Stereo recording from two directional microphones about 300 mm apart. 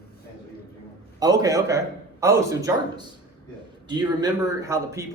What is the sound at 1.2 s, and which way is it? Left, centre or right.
A man's voice, centre.